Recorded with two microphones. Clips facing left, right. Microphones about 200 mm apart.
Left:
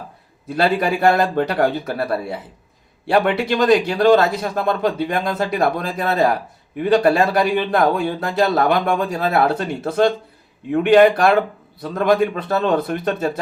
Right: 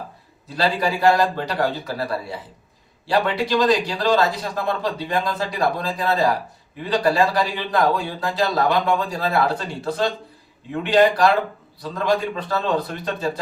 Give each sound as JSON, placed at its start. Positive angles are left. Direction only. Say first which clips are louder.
{"t": 0.4, "sound": "speech", "louder": "left 4 dB", "side_deg": 55}